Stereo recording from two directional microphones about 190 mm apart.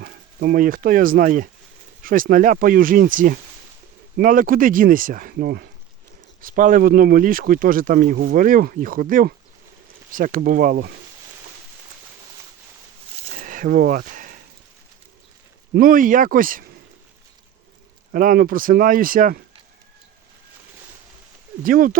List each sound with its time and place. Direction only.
0.0 s speech: 50° right (ahead or behind)
13.2 s a sound: 45° right (ahead or behind)
15.7 s speech: 45° right (ahead or behind)
18.1 s speech: 45° right (ahead or behind)
21.6 s speech: 45° right (ahead or behind)